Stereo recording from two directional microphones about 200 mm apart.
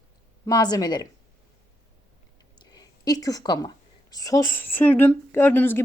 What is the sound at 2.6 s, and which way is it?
A woman's voice, 20° left (ahead or behind).